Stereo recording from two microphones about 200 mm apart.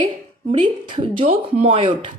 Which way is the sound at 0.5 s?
25° right (ahead or behind).